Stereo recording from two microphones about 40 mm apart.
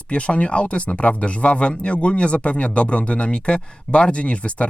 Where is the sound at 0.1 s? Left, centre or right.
Left.